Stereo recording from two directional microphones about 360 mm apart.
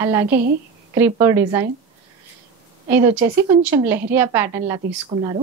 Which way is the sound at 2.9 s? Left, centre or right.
Centre.